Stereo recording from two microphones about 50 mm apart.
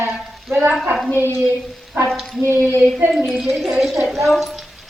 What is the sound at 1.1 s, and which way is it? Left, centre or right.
Speech, right.